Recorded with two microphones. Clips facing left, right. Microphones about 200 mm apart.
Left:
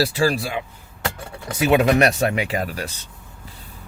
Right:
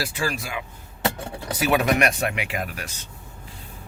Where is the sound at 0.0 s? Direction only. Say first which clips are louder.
Left 8 dB; 35° left (ahead or behind).